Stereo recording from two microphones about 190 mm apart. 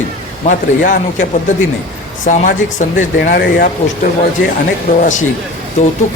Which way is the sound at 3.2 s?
55° left (ahead or behind).